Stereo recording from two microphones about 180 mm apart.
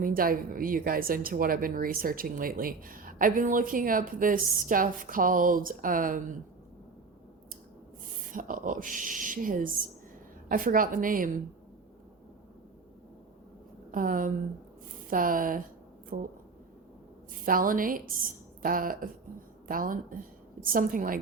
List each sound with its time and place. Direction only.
0.0 s a woman's voice: 55° right (ahead or behind)
8.3 s a woman's voice: 50° right (ahead or behind)
13.9 s a woman's voice: 50° right (ahead or behind)
17.4 s a woman's voice: 50° right (ahead or behind)